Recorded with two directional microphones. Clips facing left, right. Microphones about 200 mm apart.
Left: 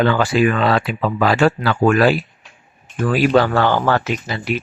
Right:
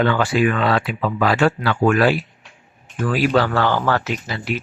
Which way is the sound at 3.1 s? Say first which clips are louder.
Left 3 dB; 20° left (ahead or behind).